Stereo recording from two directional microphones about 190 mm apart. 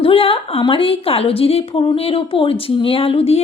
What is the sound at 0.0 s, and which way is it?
A woman's voice, 30° left (ahead or behind).